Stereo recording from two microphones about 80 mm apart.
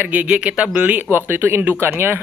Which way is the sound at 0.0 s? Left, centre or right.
Centre.